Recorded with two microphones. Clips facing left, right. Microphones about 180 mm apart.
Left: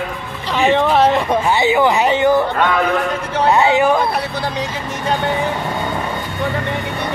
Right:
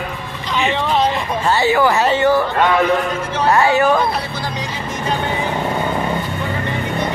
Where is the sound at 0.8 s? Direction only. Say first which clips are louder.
Left 3 dB; 65° left (ahead or behind).